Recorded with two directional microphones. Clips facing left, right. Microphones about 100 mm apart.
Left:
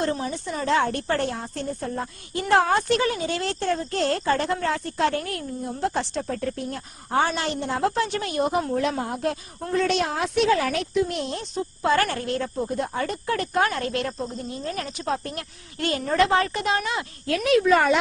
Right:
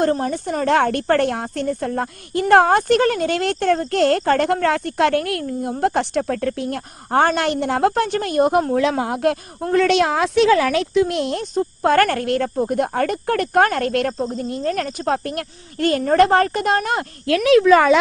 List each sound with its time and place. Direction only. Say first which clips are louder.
0.0 s a woman's voice: right 7 dB; 50° right (ahead or behind)
8.7 s a woman's voice: right 6 dB; 90° right; by 9.6 s 65° right (ahead or behind)
9.7 s a woman's voice: right 7 dB; 75° right (ahead or behind)
11.5 s a woman's voice: right 6 dB; 55° right (ahead or behind)
17.2 s a woman's voice: right 7 dB; 90° right